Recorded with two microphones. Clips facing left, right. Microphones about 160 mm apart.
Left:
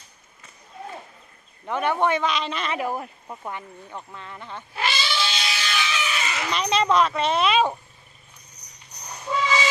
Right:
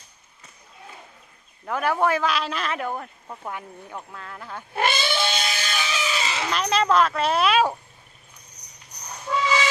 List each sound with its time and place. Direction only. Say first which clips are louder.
1.7 s speech: even; 5° right (ahead or behind)
3.5 s speech: right 1 dB; 5° right (ahead or behind)
4.7 s cat: right 4 dB; 50° right (ahead or behind); by 6.4 s 30° right (ahead or behind)
6.5 s speech: even; centre (ahead or behind)